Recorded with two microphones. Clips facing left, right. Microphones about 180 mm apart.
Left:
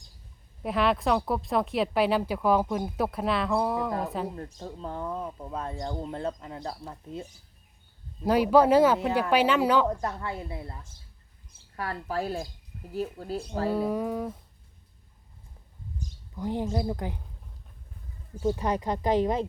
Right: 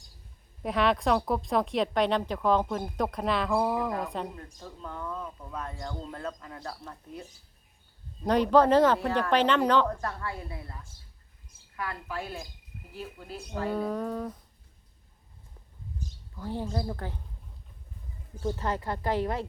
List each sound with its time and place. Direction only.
0.6 s speech: centre (ahead or behind)
4.4 s speech: 30° left (ahead or behind)
8.2 s speech: 5° left (ahead or behind)
9.8 s speech: 20° left (ahead or behind)
11.8 s speech: 35° left (ahead or behind)
13.7 s speech: 10° left (ahead or behind)
16.3 s speech: 15° left (ahead or behind)
18.3 s speech: 15° left (ahead or behind)